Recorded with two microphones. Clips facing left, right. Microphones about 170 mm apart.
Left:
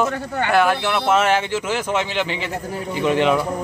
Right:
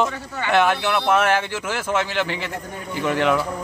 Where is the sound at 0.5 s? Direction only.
5° left (ahead or behind).